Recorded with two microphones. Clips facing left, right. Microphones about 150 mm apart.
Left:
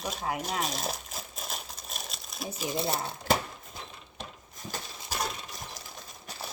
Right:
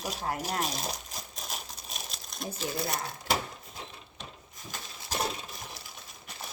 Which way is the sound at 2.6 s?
20° left (ahead or behind).